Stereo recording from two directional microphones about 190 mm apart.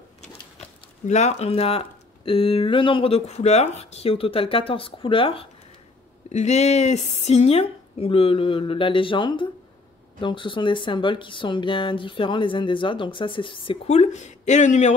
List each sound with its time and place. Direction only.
1.0 s speech: 35° left (ahead or behind)